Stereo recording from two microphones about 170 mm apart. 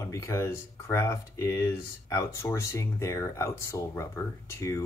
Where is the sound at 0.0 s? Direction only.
20° left (ahead or behind).